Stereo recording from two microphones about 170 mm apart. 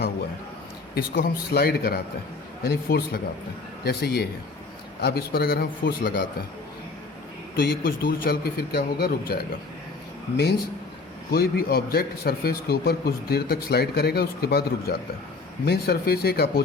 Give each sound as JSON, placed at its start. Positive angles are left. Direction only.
{"t": 0.9, "sound": "a man's voice", "side_deg": 65}
{"t": 7.5, "sound": "a man's voice", "side_deg": 60}
{"t": 11.3, "sound": "a man's voice", "side_deg": 65}